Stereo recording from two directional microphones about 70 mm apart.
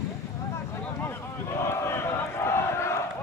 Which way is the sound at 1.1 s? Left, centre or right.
Left.